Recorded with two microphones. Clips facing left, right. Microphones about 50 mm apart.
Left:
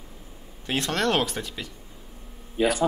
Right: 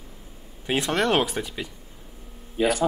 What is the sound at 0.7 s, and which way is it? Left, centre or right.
A man's voice, centre.